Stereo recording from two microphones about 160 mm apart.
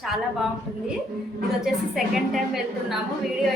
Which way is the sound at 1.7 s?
5° right (ahead or behind).